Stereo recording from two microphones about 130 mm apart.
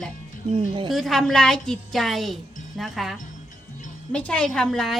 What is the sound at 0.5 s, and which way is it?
Speech, 40° right (ahead or behind).